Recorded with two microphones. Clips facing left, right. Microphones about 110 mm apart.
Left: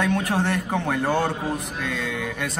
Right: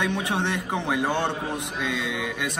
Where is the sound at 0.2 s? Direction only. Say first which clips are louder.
Left 3 dB; 20° right (ahead or behind).